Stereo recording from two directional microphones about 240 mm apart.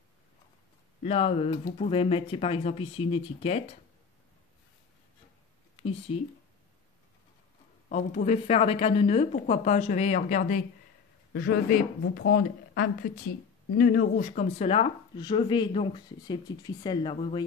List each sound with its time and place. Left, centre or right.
1.0 s speech: left
5.8 s speech: left
7.9 s speech: left